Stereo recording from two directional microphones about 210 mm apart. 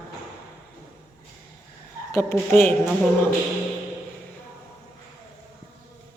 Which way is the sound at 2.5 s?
10° left (ahead or behind).